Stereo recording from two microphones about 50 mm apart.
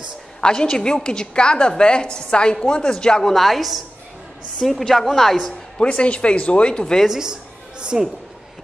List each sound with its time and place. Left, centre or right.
0.4 s a woman's voice: centre
3.3 s speech: centre
5.8 s speech: left
7.1 s speech: centre